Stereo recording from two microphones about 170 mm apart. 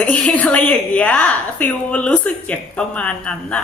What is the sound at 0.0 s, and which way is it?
A woman's voice, 10° left (ahead or behind).